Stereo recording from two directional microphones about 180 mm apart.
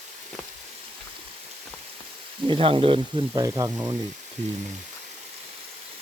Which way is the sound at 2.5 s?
30° right (ahead or behind).